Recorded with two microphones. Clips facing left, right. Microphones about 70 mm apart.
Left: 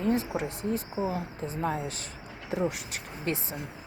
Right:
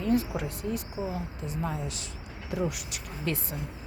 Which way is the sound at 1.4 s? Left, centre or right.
Left.